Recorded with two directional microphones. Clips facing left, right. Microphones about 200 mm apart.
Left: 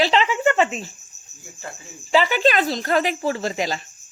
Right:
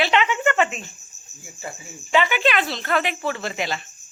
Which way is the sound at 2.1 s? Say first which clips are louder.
Left 2 dB; 35° left (ahead or behind).